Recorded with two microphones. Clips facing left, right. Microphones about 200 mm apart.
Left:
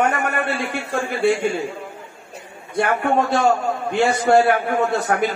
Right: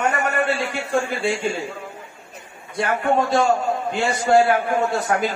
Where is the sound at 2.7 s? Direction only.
60° left (ahead or behind).